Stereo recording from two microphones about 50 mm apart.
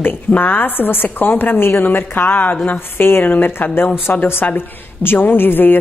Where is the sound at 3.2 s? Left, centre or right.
Left.